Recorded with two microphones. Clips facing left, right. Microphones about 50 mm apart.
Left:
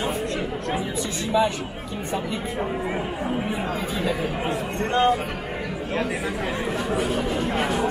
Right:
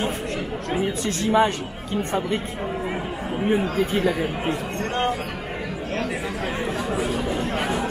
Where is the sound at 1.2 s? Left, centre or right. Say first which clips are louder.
Right 3 dB; right.